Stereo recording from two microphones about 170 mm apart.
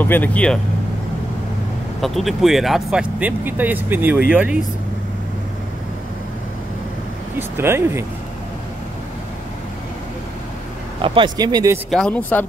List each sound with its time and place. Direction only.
0.0 s speech: 10° left (ahead or behind)
2.0 s speech: centre (ahead or behind)
7.3 s speech: 15° right (ahead or behind)
11.0 s speech: 30° right (ahead or behind)
11.9 s speech: 5° left (ahead or behind)